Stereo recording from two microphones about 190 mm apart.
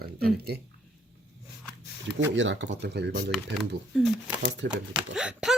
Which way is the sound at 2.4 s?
70° right (ahead or behind).